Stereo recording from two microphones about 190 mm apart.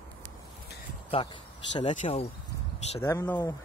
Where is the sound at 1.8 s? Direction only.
40° left (ahead or behind).